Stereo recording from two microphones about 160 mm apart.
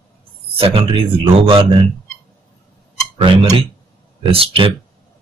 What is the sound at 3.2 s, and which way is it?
Speech, 35° right (ahead or behind).